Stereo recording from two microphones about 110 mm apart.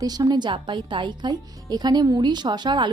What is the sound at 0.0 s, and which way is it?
A woman's voice, 35° right (ahead or behind).